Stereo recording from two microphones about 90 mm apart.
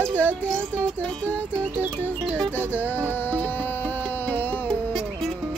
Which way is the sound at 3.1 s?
20° left (ahead or behind).